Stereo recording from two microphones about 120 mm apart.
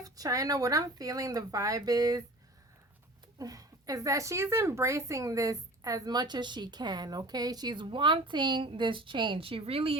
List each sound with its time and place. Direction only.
0.0 s speech: 30° right (ahead or behind)
3.3 s a woman's voice: 30° right (ahead or behind); by 10.0 s 55° right (ahead or behind)